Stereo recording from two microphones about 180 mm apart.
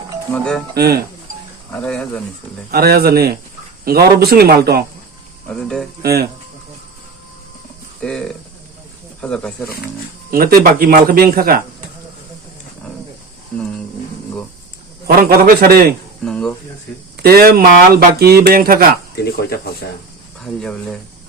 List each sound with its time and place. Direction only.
0.3 s speech: 5° left (ahead or behind)
0.7 s speech: 60° right (ahead or behind)
1.7 s speech: 5° left (ahead or behind)
2.7 s speech: 60° right (ahead or behind)
5.5 s speech: 5° left (ahead or behind)
6.0 s speech: 60° right (ahead or behind)
8.0 s speech: 5° left (ahead or behind)
10.3 s speech: 55° right (ahead or behind)
15.0 s speech: 55° right (ahead or behind)
16.2 s speech: 5° left (ahead or behind)
17.2 s speech: 60° right (ahead or behind)
19.1 s speech: 60° left (ahead or behind)
20.4 s speech: 5° left (ahead or behind)